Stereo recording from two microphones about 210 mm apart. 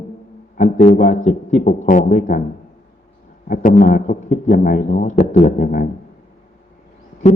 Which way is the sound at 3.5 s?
40° left (ahead or behind).